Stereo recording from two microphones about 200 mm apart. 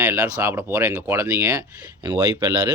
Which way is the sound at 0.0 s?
5° right (ahead or behind).